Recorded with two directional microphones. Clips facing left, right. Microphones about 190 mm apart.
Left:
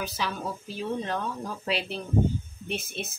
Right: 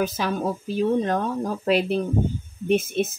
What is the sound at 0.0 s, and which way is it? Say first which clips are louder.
Speech: right 8 dB; 45° right (ahead or behind).